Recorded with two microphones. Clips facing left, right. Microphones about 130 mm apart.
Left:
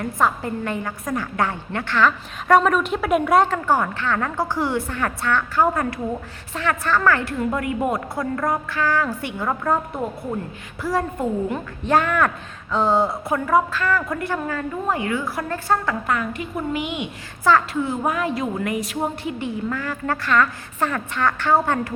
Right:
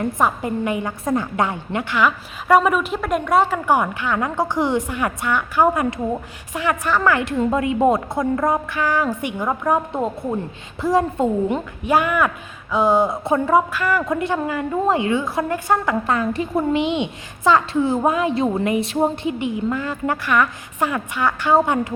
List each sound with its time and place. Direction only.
0.0 s a woman's voice: 15° right (ahead or behind); by 3.6 s centre (ahead or behind)
3.7 s a woman's voice: 15° right (ahead or behind)
11.9 s a woman's voice: 10° right (ahead or behind); by 13.6 s 25° right (ahead or behind)
13.7 s a woman's voice: 15° right (ahead or behind)
16.0 s a woman's voice: 30° right (ahead or behind)